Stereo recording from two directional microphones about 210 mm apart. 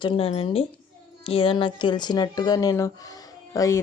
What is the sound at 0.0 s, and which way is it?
A woman's voice, 25° left (ahead or behind).